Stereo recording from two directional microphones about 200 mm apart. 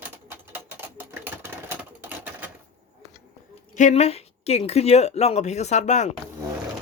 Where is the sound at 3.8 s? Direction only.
35° left (ahead or behind).